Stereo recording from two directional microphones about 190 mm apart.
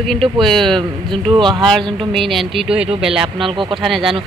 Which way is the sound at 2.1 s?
Centre (ahead or behind).